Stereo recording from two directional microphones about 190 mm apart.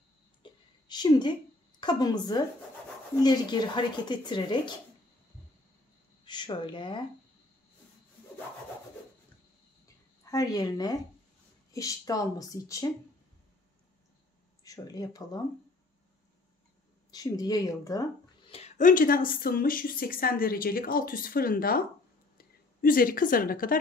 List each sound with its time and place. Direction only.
0.4 s a sound: 20° left (ahead or behind)
3.2 s speech: 20° left (ahead or behind)
6.2 s speech: 25° left (ahead or behind)
10.3 s speech: 20° left (ahead or behind)
14.6 s speech: 20° left (ahead or behind)
17.1 s speech: 20° left (ahead or behind)
18.5 s speech: 35° left (ahead or behind)